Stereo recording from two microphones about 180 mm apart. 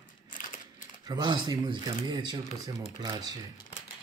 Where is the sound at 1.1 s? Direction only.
25° right (ahead or behind).